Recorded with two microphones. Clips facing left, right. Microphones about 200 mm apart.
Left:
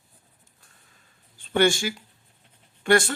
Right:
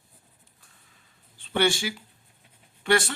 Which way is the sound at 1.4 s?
45° left (ahead or behind).